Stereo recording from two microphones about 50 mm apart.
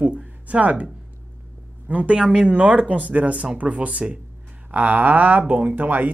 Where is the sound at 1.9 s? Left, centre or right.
Right.